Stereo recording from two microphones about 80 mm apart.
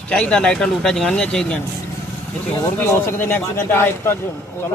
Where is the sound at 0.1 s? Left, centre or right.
Centre.